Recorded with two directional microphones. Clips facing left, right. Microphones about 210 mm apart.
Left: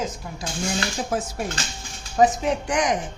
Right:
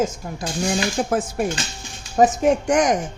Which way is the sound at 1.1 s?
55° right (ahead or behind).